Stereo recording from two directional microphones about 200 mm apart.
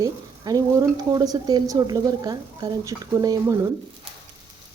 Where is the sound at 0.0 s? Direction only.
20° right (ahead or behind).